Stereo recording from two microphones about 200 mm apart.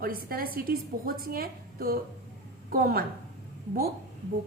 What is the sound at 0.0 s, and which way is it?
A woman's voice, 45° right (ahead or behind).